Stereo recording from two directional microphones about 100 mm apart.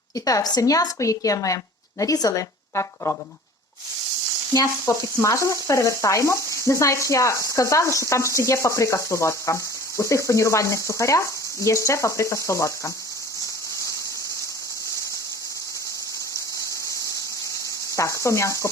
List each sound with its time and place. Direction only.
0.3 s stir: 40° left (ahead or behind)
2.0 s speech: 35° left (ahead or behind)
4.5 s stir: 30° left (ahead or behind)
10.0 s speech: 30° left (ahead or behind)
17.9 s speech: 30° left (ahead or behind)